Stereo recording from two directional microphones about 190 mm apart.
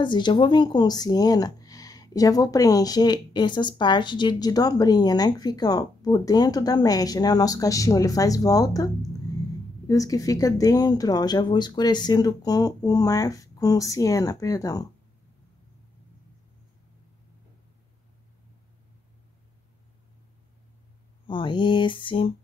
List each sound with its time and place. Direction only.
0.0 s speech: 25° left (ahead or behind)
21.3 s speech: 25° left (ahead or behind)